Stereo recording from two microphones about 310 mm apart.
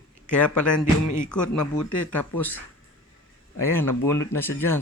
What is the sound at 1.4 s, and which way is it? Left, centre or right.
Speech, left.